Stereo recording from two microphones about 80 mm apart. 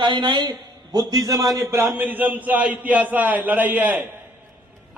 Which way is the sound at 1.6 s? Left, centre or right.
Right.